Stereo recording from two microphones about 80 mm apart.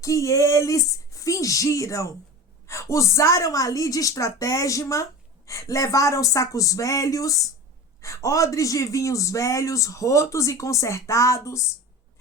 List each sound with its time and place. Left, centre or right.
0.0 s a woman's voice: left